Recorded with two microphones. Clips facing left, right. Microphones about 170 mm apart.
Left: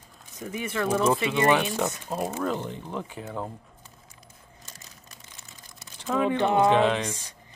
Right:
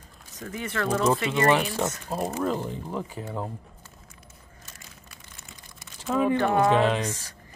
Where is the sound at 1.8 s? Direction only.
Centre (ahead or behind).